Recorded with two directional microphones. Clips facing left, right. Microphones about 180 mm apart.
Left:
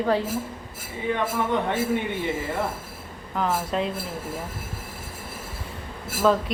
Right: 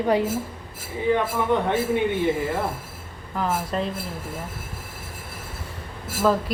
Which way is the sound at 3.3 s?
Centre (ahead or behind).